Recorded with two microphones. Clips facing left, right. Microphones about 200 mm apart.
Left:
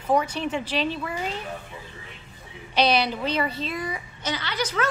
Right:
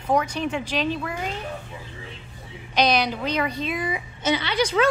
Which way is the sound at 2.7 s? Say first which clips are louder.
Even; 10° right (ahead or behind).